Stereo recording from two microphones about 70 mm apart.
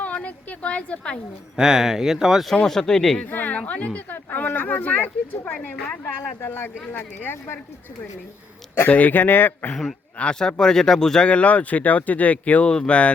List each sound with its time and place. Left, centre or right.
0.0 s a sound: left
1.5 s speech: centre
2.5 s speech: centre
3.2 s a sound: left
3.7 s speech: centre
8.9 s speech: left
10.2 s speech: centre